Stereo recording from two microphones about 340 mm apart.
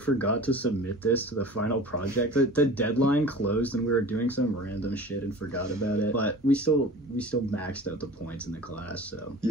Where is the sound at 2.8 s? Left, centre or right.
Left.